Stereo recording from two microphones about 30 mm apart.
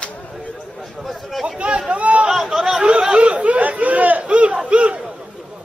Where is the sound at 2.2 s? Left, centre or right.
Centre.